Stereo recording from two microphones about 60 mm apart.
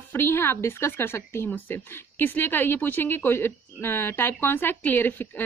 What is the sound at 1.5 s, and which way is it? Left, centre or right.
A woman's voice, left.